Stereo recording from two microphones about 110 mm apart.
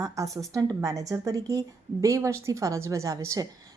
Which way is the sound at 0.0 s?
30° right (ahead or behind).